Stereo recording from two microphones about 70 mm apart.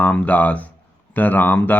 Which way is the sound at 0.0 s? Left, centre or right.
Left.